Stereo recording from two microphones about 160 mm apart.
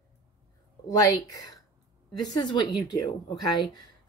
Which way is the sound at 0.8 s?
20° left (ahead or behind).